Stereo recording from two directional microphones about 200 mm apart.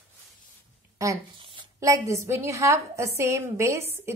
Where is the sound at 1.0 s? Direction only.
15° right (ahead or behind).